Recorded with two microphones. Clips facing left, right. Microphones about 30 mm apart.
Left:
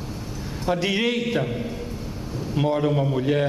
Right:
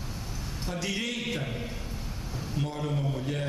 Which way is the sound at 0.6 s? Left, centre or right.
Left.